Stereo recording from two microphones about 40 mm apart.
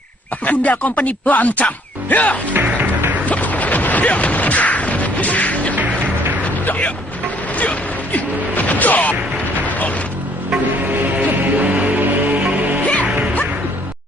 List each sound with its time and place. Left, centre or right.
0.5 s speech: left
2.5 s music: right
3.3 s a sound: left
6.6 s music: left
11.1 s music: right